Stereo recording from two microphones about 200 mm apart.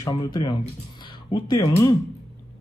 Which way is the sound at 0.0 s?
20° left (ahead or behind).